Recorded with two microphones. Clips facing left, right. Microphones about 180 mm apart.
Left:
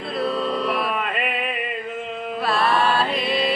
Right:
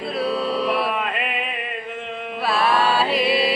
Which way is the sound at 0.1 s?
Centre (ahead or behind).